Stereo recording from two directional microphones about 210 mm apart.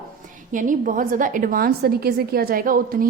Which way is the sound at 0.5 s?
40° right (ahead or behind).